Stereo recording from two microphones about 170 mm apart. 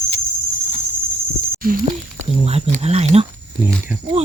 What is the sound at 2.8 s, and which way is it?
Speech, 40° right (ahead or behind).